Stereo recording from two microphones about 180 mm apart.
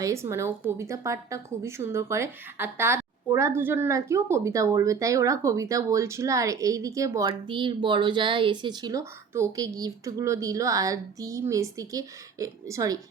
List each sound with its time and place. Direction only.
0.0 s a woman's voice: 15° right (ahead or behind)